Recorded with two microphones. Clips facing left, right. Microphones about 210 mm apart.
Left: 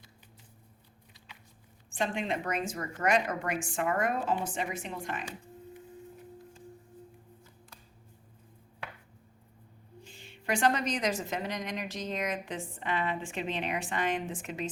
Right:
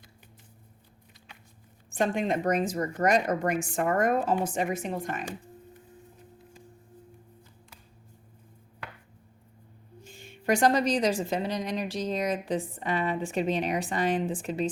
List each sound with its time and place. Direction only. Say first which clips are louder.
2.0 s speech: right 5 dB; 45° right (ahead or behind)
10.0 s a woman's voice: right 4 dB; 45° right (ahead or behind)